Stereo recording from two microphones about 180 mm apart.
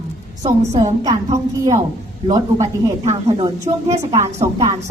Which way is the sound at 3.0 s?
35° right (ahead or behind).